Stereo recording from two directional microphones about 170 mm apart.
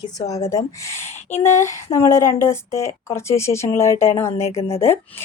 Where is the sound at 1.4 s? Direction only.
15° left (ahead or behind).